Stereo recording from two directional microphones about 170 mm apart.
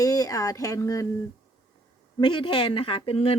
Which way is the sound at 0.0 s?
20° left (ahead or behind).